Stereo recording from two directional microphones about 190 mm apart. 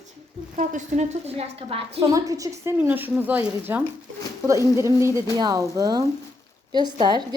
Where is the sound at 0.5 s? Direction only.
40° right (ahead or behind).